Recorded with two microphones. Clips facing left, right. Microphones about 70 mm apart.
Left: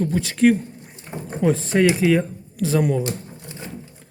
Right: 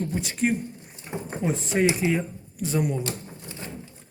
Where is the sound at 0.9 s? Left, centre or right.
Left.